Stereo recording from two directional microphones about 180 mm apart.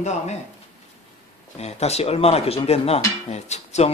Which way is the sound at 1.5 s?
35° left (ahead or behind).